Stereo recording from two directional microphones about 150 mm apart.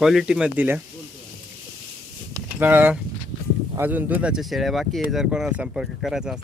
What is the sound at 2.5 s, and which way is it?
Speech, 15° right (ahead or behind).